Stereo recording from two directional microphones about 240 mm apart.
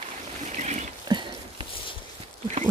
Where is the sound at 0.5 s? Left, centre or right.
Right.